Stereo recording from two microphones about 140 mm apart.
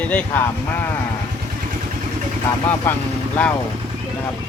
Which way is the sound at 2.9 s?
15° left (ahead or behind).